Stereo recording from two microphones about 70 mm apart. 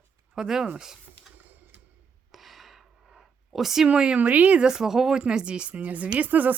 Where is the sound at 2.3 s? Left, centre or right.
Centre.